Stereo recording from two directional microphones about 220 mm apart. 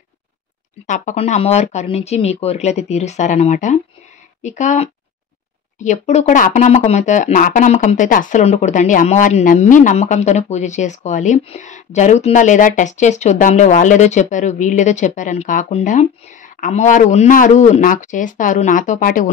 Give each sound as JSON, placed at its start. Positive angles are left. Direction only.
{"t": 0.8, "sound": "a woman's voice", "side_deg": 35}